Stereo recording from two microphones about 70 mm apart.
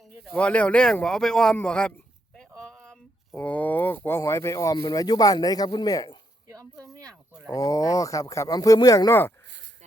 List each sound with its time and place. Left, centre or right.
0.3 s speech: centre
2.3 s a sound: centre
3.3 s speech: left
4.2 s a man's voice: left
6.8 s speech: right
7.5 s a man's voice: left
9.0 s speech: left